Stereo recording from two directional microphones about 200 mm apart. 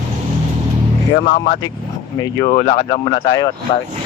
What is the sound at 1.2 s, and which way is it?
Speech, 40° left (ahead or behind).